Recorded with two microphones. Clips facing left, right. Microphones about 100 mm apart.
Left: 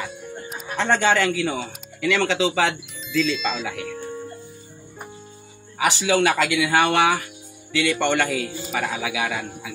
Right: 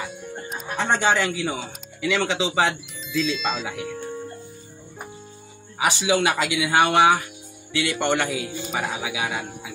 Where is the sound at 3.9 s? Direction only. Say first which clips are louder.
Even; centre (ahead or behind).